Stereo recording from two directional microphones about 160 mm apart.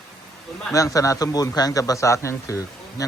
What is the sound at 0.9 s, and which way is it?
A man's voice, 20° left (ahead or behind).